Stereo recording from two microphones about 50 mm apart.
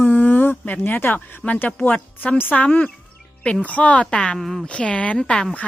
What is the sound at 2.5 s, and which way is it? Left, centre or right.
A woman's voice, left.